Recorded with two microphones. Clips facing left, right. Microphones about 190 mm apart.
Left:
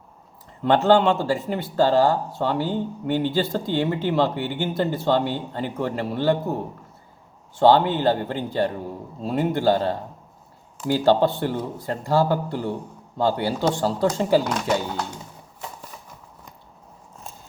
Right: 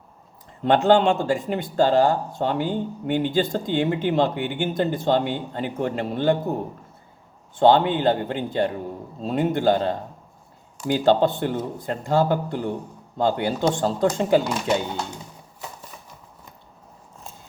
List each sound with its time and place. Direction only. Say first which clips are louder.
0.6 s speech: even; 20° right (ahead or behind)
7.6 s speech: even; 20° right (ahead or behind)